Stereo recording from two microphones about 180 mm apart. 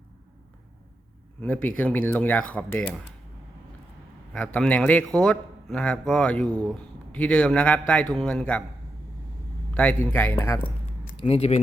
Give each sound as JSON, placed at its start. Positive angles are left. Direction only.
{"t": 1.4, "sound": "speech", "side_deg": 10}
{"t": 4.3, "sound": "a man's voice", "side_deg": 5}
{"t": 9.7, "sound": "speech", "side_deg": 10}
{"t": 11.2, "sound": "speech", "side_deg": 35}